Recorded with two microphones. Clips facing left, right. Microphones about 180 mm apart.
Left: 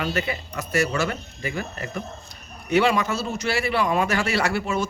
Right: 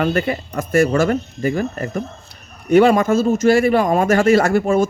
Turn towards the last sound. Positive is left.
turn(degrees=-50)  # may be behind; listen again after turning